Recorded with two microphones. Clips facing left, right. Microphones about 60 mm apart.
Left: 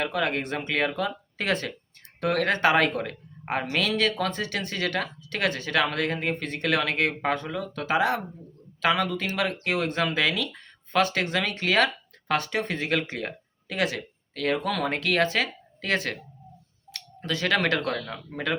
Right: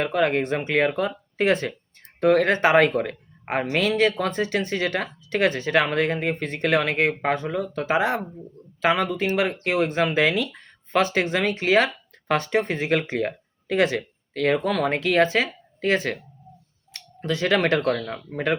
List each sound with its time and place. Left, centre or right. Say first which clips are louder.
0.0 s speech: right 5 dB; right
12.3 s speech: right 4 dB; right